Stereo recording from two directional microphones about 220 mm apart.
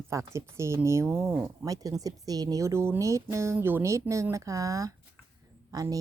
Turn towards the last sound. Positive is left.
turn(degrees=-15)  # may be behind; listen again after turning